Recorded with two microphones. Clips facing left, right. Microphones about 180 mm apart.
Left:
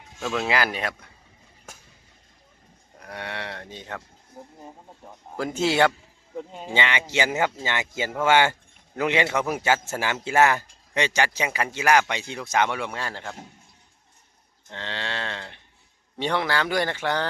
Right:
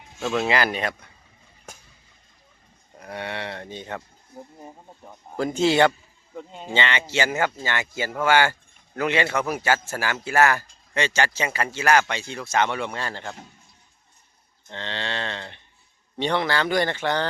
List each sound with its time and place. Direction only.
0.0 s speech: 5° right (ahead or behind)
1.7 s a sound: centre (ahead or behind)
3.0 s speech: centre (ahead or behind)
5.4 s a man's voice: 5° left (ahead or behind)
14.7 s a man's voice: 5° left (ahead or behind)